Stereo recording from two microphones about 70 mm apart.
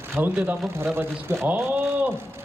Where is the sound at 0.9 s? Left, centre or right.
Right.